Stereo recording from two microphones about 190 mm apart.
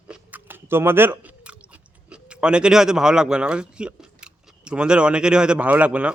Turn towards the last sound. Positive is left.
turn(degrees=-5)  # may be behind; listen again after turning